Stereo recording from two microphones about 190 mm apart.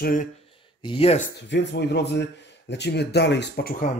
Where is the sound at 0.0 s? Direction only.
45° left (ahead or behind).